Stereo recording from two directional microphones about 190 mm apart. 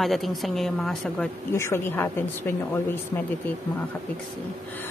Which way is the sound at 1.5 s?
15° left (ahead or behind).